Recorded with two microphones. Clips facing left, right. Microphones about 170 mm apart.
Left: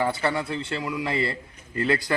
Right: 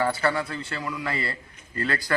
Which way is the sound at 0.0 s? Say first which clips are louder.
Even; 20° left (ahead or behind).